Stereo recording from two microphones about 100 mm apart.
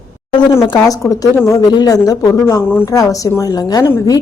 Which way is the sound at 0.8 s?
35° left (ahead or behind).